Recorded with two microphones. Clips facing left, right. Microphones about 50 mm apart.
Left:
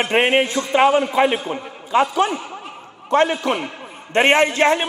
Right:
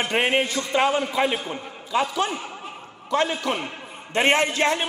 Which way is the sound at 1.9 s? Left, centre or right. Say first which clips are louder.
Left 6 dB; left.